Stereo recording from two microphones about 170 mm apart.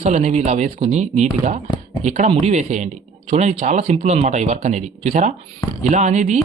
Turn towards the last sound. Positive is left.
turn(degrees=-45)  # may be behind; listen again after turning